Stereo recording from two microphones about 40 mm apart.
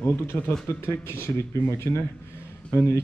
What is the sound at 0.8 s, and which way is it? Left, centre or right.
Speech, left.